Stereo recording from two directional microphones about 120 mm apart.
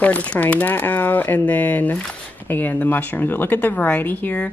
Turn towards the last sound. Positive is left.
turn(degrees=15)  # may be behind; listen again after turning